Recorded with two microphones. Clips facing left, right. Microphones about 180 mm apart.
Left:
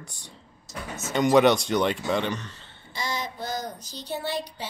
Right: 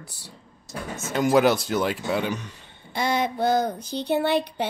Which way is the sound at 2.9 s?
60° right (ahead or behind).